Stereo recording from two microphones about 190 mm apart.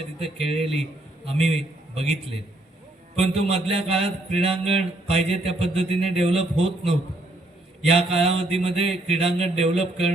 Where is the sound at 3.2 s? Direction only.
30° right (ahead or behind).